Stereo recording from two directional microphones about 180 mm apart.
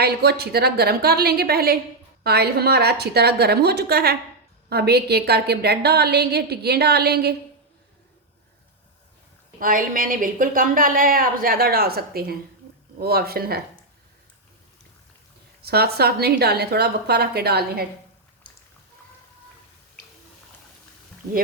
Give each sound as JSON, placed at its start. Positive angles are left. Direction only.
{"t": 0.0, "sound": "a woman's voice", "side_deg": -65}
{"t": 9.6, "sound": "a woman's voice", "side_deg": -50}
{"t": 15.6, "sound": "a woman's voice", "side_deg": -60}